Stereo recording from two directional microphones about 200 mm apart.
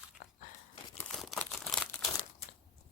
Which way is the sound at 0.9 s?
5° left (ahead or behind).